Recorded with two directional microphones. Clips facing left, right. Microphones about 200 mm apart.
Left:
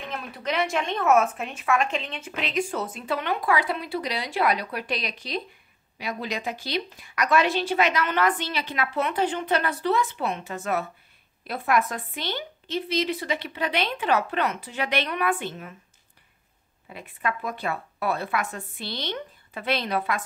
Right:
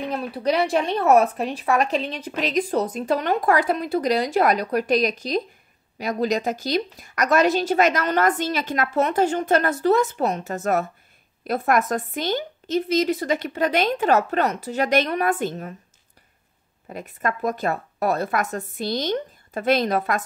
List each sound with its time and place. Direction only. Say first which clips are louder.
0.0 s a woman's voice: right 8 dB; 35° right (ahead or behind)
16.9 s a woman's voice: right 3 dB; 45° right (ahead or behind)